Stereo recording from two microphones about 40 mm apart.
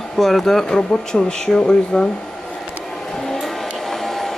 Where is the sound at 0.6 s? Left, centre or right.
Centre.